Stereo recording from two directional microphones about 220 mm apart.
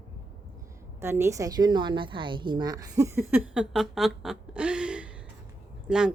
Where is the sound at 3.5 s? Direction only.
Centre (ahead or behind).